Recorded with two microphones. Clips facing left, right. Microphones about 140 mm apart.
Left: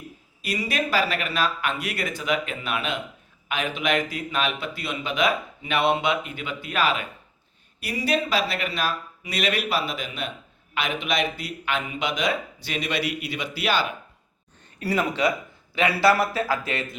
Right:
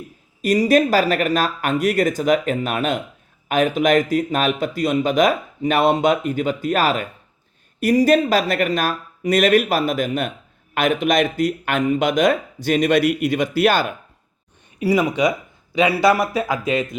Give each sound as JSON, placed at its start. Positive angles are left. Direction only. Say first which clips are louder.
{"t": 0.4, "sound": "speech", "louder": "right 12 dB", "side_deg": -45}
{"t": 14.8, "sound": "speech", "louder": "right 6 dB", "side_deg": -10}